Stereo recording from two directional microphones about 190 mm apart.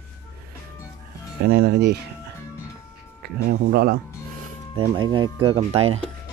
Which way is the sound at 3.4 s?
55° right (ahead or behind).